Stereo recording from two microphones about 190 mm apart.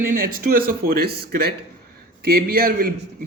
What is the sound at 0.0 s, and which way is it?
A man's voice, 50° right (ahead or behind).